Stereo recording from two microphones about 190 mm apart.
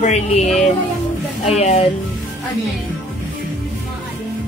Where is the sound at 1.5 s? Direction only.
35° left (ahead or behind).